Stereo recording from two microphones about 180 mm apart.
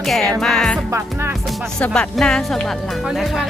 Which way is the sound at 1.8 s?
5° left (ahead or behind).